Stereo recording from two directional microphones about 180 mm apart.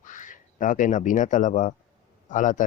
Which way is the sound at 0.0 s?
45° left (ahead or behind).